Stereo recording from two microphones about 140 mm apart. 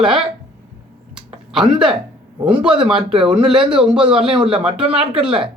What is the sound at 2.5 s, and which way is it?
A man's voice, 5° right (ahead or behind).